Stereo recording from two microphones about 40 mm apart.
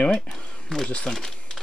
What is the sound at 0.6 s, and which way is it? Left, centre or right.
Speech, centre.